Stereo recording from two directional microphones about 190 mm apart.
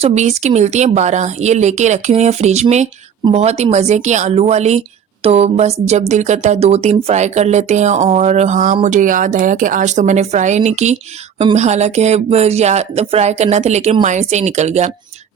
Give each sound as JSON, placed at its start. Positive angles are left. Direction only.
{"t": 0.0, "sound": "speech", "side_deg": -35}